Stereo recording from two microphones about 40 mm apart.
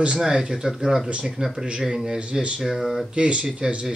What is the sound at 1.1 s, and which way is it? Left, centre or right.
Speech, right.